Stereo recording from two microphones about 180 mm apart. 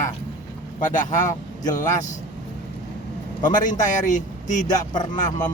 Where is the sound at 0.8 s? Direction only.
45° left (ahead or behind).